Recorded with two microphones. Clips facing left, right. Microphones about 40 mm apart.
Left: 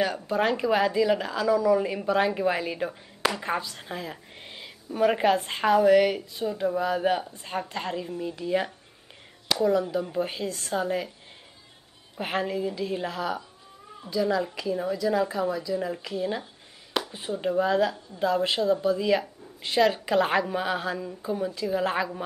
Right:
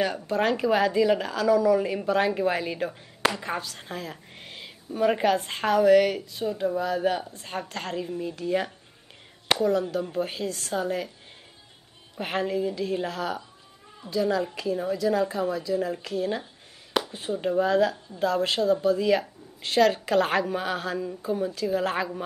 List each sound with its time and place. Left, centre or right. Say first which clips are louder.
0.0 s a woman's voice: even; centre
3.8 s a woman's voice: even; centre
9.5 s speech: right 2 dB; right
9.9 s a woman's voice: even; centre
12.2 s a woman's voice: right 1 dB; centre
14.7 s a woman's voice: right 1 dB; centre